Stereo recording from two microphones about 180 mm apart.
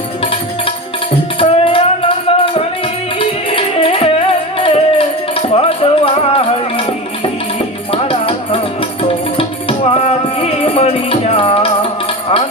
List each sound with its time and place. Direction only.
1.4 s music: 30° left (ahead or behind)
7.9 s music: 30° left (ahead or behind)
9.4 s music: 30° left (ahead or behind)